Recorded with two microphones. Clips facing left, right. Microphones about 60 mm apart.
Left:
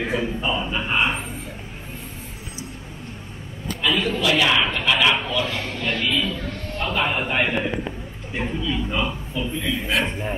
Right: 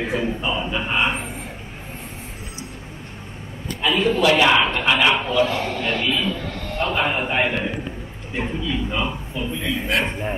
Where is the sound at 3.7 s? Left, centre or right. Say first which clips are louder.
Right 2 dB; right.